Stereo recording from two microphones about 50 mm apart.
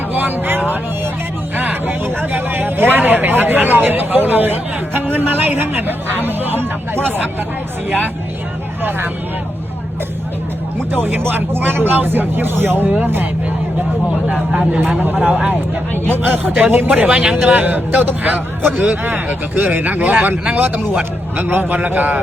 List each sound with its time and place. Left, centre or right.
0.1 s speech: right
1.5 s vehicle: right
2.2 s speech: right
8.8 s speech: right
10.9 s speech: right
14.5 s speech: right
14.8 s speech: right
16.0 s speech: right
17.1 s speech: centre
17.4 s speech: right
21.0 s speech: right